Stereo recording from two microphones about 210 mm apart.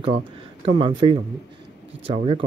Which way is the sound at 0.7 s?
25° right (ahead or behind).